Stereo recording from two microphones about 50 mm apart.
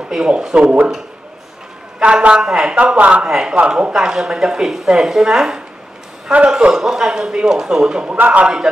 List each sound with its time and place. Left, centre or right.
0.1 s speech: centre
2.0 s speech: centre
3.3 s speech: centre
6.7 s speech: centre